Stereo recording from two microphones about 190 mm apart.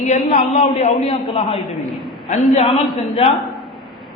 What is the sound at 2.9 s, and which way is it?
Speech, 30° left (ahead or behind).